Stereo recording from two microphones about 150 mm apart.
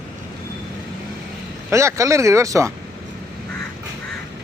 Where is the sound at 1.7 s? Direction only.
20° right (ahead or behind).